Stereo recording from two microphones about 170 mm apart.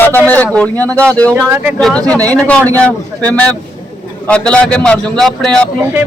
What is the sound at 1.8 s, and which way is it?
A man's voice, 5° left (ahead or behind).